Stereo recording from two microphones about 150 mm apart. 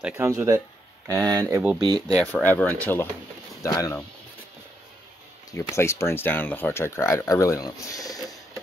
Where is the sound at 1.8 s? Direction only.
25° right (ahead or behind).